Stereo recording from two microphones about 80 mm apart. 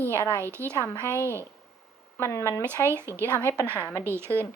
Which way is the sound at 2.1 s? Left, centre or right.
Left.